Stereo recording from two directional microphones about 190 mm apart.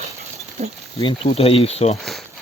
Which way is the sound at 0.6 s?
35° right (ahead or behind).